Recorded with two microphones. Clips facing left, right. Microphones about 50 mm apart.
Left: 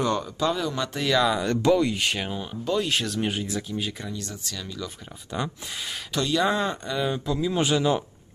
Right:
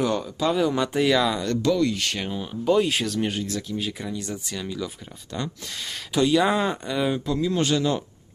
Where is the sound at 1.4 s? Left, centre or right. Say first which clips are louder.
Left 1 dB; left.